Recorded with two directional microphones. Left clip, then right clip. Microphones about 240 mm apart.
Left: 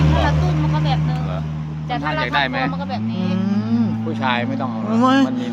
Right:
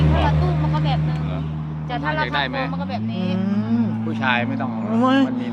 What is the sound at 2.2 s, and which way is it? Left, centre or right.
Speech, left.